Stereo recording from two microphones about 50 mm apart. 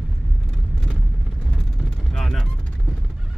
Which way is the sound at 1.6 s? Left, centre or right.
Centre.